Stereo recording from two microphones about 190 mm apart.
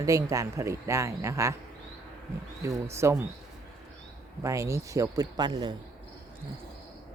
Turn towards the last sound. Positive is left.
turn(degrees=-20)  # may be behind; listen again after turning